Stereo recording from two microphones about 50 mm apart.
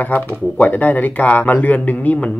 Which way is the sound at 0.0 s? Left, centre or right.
Left.